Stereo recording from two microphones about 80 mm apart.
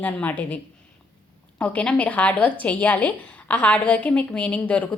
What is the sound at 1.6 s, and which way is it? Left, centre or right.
A woman's voice, centre.